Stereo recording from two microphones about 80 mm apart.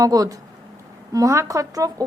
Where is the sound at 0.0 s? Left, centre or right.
Right.